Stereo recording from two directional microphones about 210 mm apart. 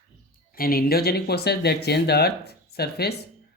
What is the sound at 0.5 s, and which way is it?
Speech, 45° left (ahead or behind).